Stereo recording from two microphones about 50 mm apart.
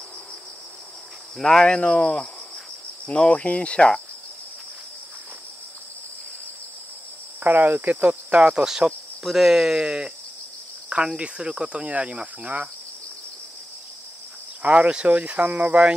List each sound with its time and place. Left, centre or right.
1.4 s speech: centre
1.8 s speech: left
3.1 s speech: left
7.4 s speech: right; by 9.8 s centre
9.8 s speech: right
11.1 s speech: right
14.6 s speech: right